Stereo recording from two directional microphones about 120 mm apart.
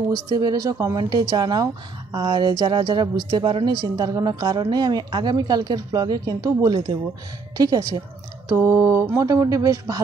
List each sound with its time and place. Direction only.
0.4 s speech: 30° right (ahead or behind)
8.5 s speech: 20° right (ahead or behind)